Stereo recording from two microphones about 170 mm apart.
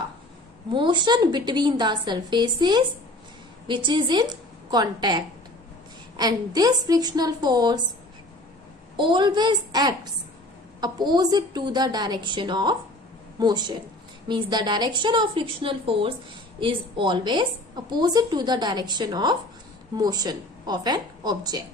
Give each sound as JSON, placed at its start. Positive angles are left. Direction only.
{"t": 0.7, "sound": "a woman's voice", "side_deg": -30}
{"t": 9.0, "sound": "a woman's voice", "side_deg": -30}